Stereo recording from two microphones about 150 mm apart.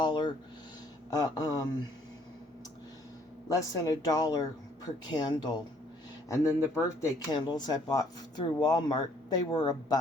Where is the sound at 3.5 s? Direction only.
25° left (ahead or behind).